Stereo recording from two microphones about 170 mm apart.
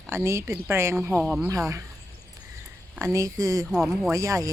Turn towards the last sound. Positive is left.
turn(degrees=-20)  # may be behind; listen again after turning